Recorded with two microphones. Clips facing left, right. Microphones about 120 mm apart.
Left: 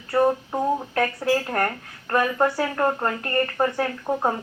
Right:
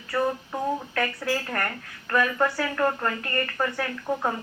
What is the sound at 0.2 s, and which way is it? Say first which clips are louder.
A woman's voice: left 6 dB; 35° left (ahead or behind).